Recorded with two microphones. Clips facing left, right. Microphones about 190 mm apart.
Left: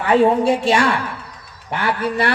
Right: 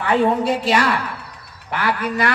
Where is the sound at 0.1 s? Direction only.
25° left (ahead or behind).